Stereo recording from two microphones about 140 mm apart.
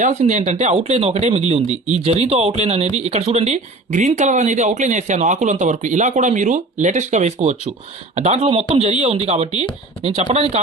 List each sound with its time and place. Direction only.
0.0 s speech: 55° right (ahead or behind)